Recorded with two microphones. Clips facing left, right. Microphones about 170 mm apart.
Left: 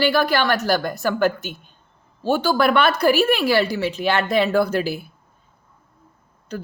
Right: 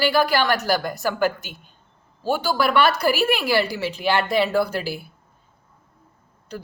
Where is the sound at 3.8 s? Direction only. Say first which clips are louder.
Left 1 dB; 50° left (ahead or behind).